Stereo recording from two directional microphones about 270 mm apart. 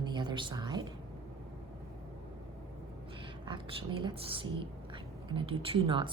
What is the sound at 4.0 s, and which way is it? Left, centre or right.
Speech, centre.